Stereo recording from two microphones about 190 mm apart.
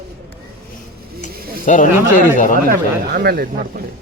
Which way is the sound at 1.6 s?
40° left (ahead or behind).